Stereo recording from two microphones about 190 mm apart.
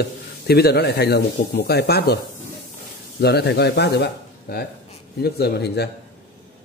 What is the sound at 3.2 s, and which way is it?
Speech, 60° left (ahead or behind).